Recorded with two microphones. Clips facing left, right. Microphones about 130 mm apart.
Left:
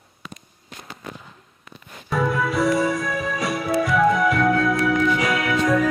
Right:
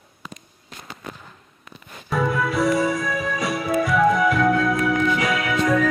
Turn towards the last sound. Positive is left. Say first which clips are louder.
# even
turn(degrees=0)  # may be behind; listen again after turning